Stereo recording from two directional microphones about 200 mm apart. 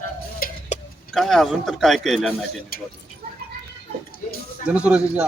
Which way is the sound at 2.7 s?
45° left (ahead or behind).